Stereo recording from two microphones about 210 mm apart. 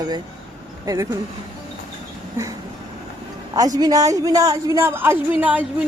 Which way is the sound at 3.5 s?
20° right (ahead or behind).